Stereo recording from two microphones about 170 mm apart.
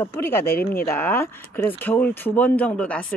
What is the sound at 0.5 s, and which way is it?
Speech, 60° left (ahead or behind).